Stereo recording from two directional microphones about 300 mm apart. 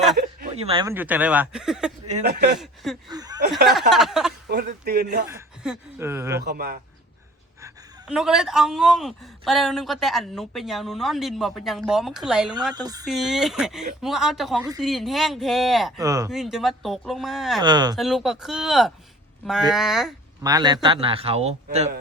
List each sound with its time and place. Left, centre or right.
0.5 s speech: centre
2.1 s a man's voice: right
2.6 s speech: centre
3.1 s speech: centre
3.7 s speech: centre
4.4 s a man's voice: right
5.3 s speech: centre
6.4 s a man's voice: right
7.6 s speech: centre
12.7 s speech: centre
13.1 s speech: centre
17.6 s speech: centre
17.9 s speech: centre
20.4 s a man's voice: centre